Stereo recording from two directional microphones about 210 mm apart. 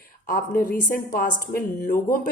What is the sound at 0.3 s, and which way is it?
A woman's voice, 45° left (ahead or behind).